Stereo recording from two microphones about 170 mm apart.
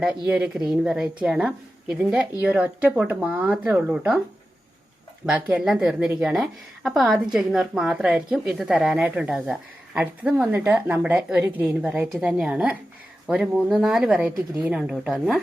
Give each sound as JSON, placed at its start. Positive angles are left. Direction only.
{"t": 0.0, "sound": "a woman's voice", "side_deg": -5}
{"t": 5.2, "sound": "a woman's voice", "side_deg": -5}